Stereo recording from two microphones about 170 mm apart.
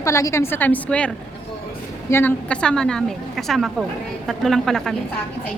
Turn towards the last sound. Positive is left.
turn(degrees=0)  # may be behind; listen again after turning